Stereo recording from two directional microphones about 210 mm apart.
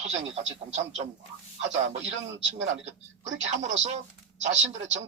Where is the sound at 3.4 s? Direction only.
35° right (ahead or behind).